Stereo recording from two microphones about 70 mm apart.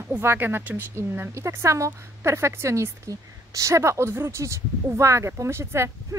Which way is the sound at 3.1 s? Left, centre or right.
Right.